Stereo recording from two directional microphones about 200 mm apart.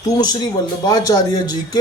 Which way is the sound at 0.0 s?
20° left (ahead or behind).